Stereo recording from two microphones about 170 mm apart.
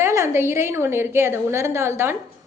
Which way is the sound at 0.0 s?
15° right (ahead or behind).